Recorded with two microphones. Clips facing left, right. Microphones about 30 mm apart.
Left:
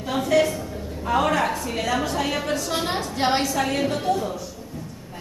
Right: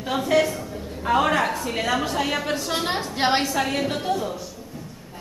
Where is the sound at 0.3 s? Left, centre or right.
Centre.